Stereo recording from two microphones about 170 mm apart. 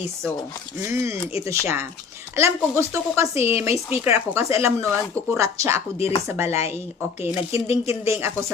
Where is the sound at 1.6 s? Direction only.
15° right (ahead or behind).